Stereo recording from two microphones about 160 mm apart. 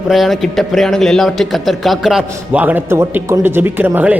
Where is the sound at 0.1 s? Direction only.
Centre (ahead or behind).